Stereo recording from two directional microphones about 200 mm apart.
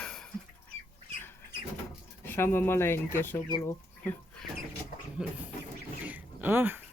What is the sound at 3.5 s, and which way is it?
Speech, 20° left (ahead or behind).